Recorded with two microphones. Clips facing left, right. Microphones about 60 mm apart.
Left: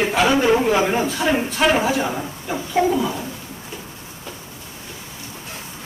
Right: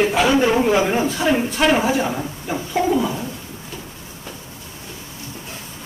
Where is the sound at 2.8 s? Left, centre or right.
Left.